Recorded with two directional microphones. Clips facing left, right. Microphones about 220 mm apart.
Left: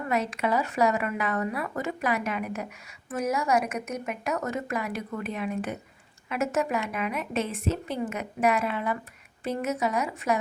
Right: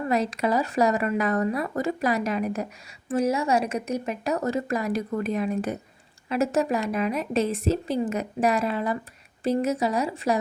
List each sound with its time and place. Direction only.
0.1 s a woman's voice: 35° right (ahead or behind)